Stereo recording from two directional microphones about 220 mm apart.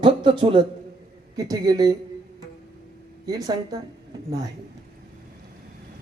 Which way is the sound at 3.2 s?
15° right (ahead or behind).